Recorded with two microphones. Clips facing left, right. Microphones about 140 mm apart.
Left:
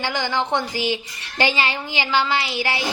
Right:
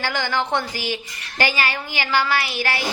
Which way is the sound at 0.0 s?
20° left (ahead or behind).